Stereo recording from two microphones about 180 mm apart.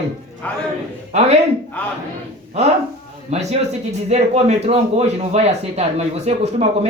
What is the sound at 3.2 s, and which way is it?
Speech, 35° right (ahead or behind).